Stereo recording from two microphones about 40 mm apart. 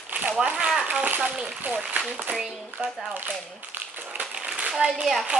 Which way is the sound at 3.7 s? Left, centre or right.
Right.